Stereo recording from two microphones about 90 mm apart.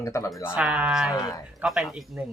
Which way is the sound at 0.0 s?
35° left (ahead or behind).